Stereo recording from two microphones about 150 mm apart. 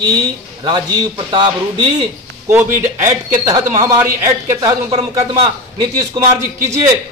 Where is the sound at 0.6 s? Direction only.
30° right (ahead or behind).